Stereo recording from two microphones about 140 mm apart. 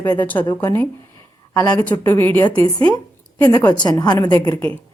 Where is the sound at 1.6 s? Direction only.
30° left (ahead or behind).